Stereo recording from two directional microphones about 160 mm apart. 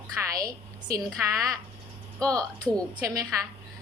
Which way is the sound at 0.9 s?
20° right (ahead or behind).